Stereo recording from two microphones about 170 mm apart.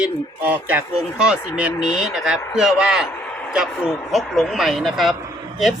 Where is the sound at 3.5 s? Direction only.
5° right (ahead or behind).